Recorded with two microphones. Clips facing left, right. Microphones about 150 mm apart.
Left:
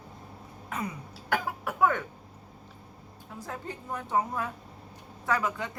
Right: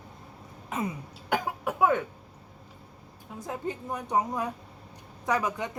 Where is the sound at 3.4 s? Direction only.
20° right (ahead or behind).